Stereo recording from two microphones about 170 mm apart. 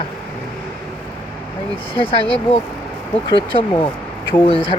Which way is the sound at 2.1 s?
30° left (ahead or behind).